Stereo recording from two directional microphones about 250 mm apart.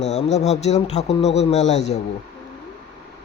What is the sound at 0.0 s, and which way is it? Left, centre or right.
Speech, left.